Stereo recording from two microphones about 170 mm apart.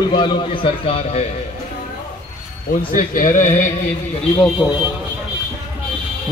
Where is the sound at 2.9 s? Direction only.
50° left (ahead or behind).